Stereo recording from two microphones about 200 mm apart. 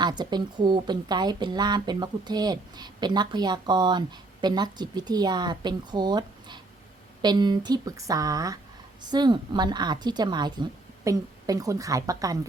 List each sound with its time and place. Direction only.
0.0 s a woman's voice: 20° right (ahead or behind)